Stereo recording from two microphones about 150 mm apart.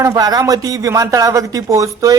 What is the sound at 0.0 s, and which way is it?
Speech, 25° right (ahead or behind).